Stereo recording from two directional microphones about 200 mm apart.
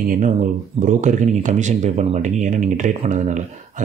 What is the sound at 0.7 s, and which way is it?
Speech, 40° right (ahead or behind).